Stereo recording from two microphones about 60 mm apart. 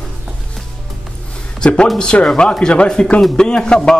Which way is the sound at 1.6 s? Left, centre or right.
Centre.